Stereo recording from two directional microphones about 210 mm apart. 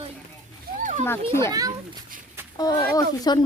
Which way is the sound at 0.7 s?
45° right (ahead or behind).